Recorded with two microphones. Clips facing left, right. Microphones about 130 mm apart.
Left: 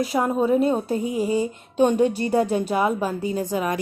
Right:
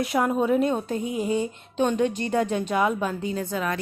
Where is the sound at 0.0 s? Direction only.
Centre (ahead or behind).